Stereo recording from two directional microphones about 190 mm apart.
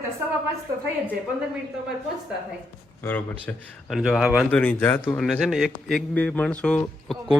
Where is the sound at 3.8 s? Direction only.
Centre (ahead or behind).